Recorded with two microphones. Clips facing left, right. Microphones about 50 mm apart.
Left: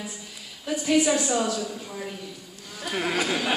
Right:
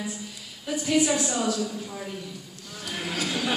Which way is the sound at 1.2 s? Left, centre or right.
Centre.